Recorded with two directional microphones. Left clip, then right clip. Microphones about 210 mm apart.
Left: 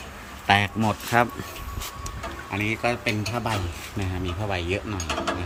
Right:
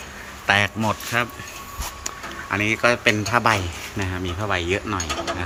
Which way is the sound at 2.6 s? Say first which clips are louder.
Right 6 dB; centre (ahead or behind).